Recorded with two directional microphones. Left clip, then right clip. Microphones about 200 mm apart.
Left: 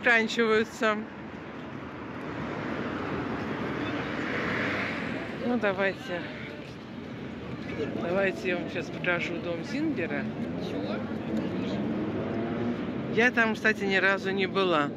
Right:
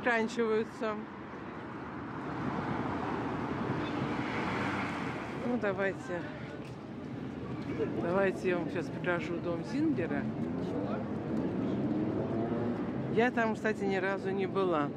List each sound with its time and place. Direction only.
0.0 s speech: 15° right (ahead or behind)
0.5 s speech: 5° right (ahead or behind)
4.3 s vehicle: 55° right (ahead or behind)
5.6 s speech: 5° right (ahead or behind)
8.1 s speech: 25° right (ahead or behind)
13.1 s speech: 20° right (ahead or behind)